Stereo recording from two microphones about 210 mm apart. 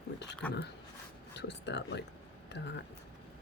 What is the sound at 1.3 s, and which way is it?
Speech, 55° left (ahead or behind).